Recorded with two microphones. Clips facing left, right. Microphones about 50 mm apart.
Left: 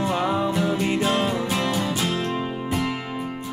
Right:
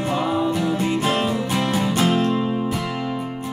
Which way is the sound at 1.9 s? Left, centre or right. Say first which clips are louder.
Right 6 dB; right.